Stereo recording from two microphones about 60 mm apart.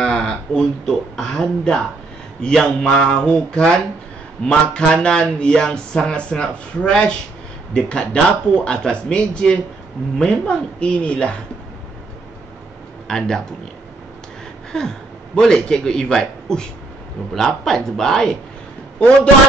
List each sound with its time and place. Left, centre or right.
0.0 s speech: centre
13.1 s speech: centre
14.7 s a man's voice: centre